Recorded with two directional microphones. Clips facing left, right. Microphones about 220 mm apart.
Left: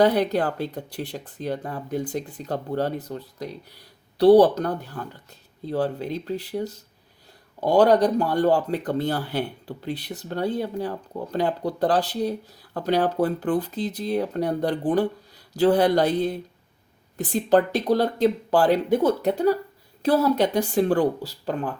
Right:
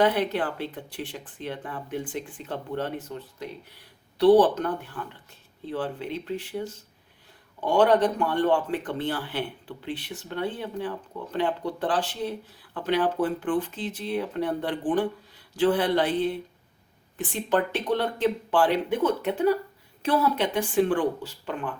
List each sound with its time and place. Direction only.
0.0 s speech: 40° left (ahead or behind)